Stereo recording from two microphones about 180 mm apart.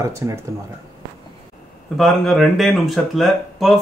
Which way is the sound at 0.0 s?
15° right (ahead or behind).